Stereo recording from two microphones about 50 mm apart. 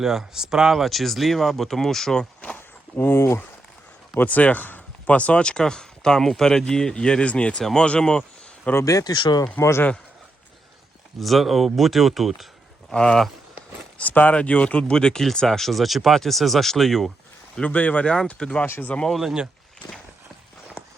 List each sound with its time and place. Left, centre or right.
0.0 s speech: centre
2.6 s a sound: left
4.2 s speech: left
7.6 s speech: centre
8.7 s speech: left
9.6 s speech: left
11.2 s speech: centre
12.9 s speech: centre
14.0 s speech: left; by 17.1 s centre
17.6 s speech: left
18.0 s speech: centre
18.6 s speech: left
19.2 s speech: centre